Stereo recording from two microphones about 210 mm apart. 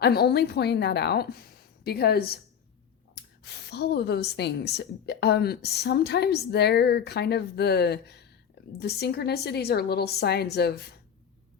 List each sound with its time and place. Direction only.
0.0 s speech: 50° left (ahead or behind)